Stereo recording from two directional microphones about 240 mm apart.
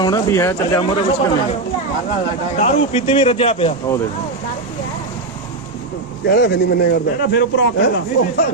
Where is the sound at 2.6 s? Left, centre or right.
Left.